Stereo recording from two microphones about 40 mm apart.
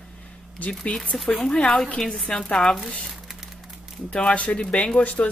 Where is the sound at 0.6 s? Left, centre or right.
Left.